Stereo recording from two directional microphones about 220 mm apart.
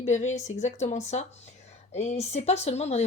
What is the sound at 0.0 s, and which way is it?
A woman's voice, 30° left (ahead or behind).